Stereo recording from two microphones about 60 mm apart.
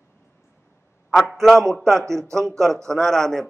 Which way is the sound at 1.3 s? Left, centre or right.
Centre.